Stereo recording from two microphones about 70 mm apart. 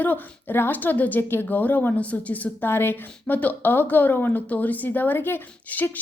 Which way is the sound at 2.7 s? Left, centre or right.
Left.